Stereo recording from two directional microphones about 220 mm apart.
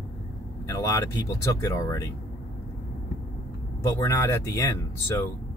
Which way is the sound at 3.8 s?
15° left (ahead or behind).